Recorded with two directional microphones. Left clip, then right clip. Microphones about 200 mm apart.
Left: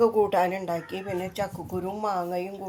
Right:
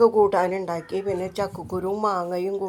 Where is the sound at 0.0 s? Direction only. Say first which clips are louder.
Right 4 dB; 15° right (ahead or behind).